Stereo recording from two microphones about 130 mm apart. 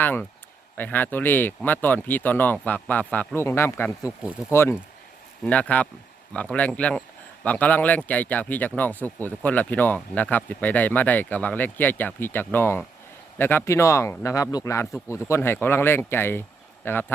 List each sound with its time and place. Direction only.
0.0 s speech: 15° left (ahead or behind)